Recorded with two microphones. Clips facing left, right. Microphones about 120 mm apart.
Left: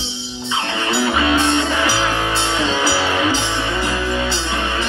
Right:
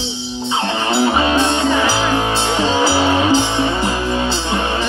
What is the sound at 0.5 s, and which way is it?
Music, 25° right (ahead or behind).